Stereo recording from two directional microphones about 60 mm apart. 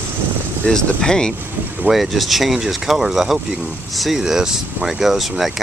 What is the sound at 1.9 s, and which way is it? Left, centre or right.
Speech, centre.